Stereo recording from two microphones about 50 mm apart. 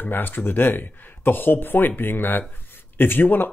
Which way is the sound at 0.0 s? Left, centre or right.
Left.